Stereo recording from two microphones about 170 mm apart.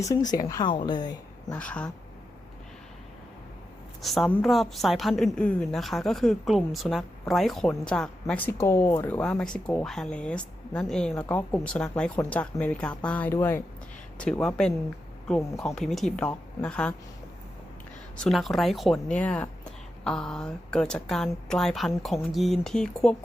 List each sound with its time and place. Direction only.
0.0 s speech: 20° left (ahead or behind)
1.5 s speech: 5° left (ahead or behind)
4.0 s a woman's voice: centre (ahead or behind)
18.2 s a woman's voice: centre (ahead or behind)